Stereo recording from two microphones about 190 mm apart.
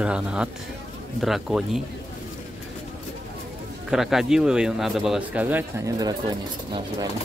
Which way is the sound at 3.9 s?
Centre (ahead or behind).